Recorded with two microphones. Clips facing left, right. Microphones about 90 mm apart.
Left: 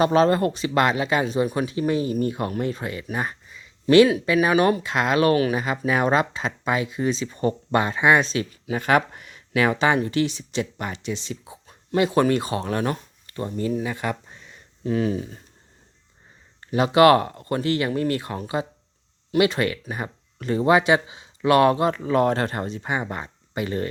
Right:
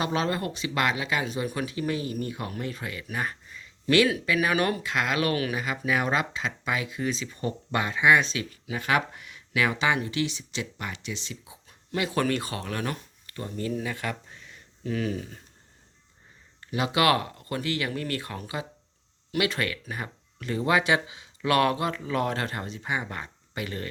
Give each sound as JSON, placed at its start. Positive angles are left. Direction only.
{"t": 0.0, "sound": "speech", "side_deg": 40}
{"t": 16.6, "sound": "speech", "side_deg": 35}